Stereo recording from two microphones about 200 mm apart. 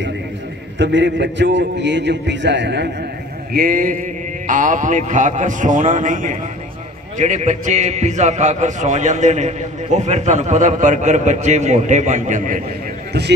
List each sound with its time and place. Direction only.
0.7 s a man's voice: 65° right (ahead or behind)
3.5 s a man's voice: 45° right (ahead or behind)